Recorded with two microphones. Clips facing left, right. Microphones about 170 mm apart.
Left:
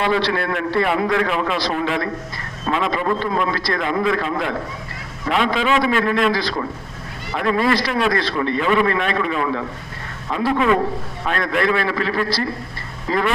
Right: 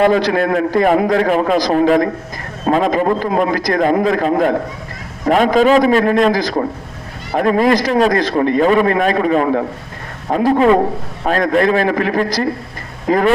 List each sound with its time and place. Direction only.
0.0 s a man's voice: 45° right (ahead or behind)